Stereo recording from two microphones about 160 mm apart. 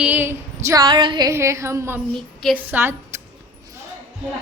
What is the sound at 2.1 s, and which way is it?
Speech, centre (ahead or behind).